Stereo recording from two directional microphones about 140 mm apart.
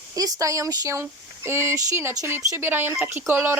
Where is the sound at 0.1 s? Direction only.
25° right (ahead or behind).